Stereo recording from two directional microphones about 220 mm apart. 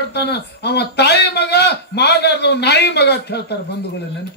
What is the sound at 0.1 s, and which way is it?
A man's voice, 50° left (ahead or behind).